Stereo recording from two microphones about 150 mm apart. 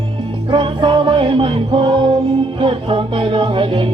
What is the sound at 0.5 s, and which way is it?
Music, 35° right (ahead or behind).